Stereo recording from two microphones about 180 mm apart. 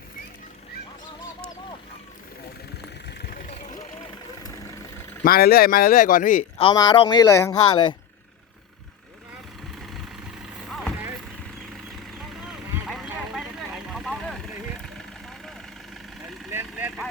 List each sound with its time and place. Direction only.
3.1 s vehicle: 60° left (ahead or behind); by 4.0 s 40° left (ahead or behind)
4.4 s vehicle: 20° left (ahead or behind)
5.2 s speech: 55° left (ahead or behind)
6.6 s a man's voice: 30° left (ahead or behind)
9.7 s vehicle: centre (ahead or behind)
12.5 s vehicle: centre (ahead or behind)
16.5 s vehicle: 10° right (ahead or behind)